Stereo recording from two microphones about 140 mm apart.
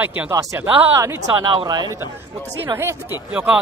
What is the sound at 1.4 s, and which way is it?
Speech, 35° right (ahead or behind).